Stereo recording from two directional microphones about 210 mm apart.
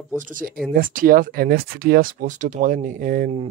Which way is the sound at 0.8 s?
40° right (ahead or behind).